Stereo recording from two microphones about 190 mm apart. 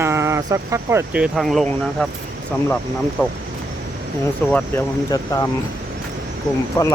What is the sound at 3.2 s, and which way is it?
Speech, 15° left (ahead or behind).